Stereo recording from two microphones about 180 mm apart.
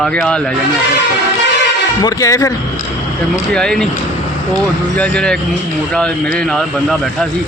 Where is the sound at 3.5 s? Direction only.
5° left (ahead or behind).